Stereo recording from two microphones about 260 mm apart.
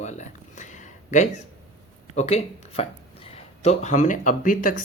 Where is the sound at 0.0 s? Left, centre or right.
Left.